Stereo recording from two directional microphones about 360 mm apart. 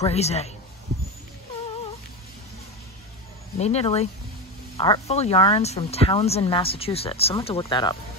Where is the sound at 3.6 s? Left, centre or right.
Centre.